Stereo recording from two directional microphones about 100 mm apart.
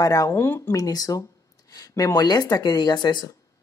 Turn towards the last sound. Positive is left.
turn(degrees=45)  # may be behind; listen again after turning